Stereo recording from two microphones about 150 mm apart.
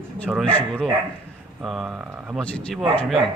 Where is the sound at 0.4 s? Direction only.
10° left (ahead or behind).